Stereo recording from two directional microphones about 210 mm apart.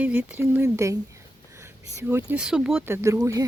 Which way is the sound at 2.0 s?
10° right (ahead or behind).